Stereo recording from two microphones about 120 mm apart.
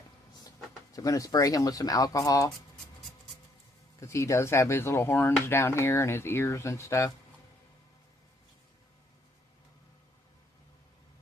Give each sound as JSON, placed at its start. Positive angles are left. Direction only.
{"t": 0.9, "sound": "speech", "side_deg": 30}
{"t": 4.0, "sound": "speech", "side_deg": 25}